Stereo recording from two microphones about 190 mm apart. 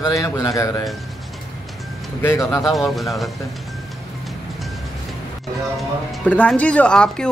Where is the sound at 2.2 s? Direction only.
15° left (ahead or behind).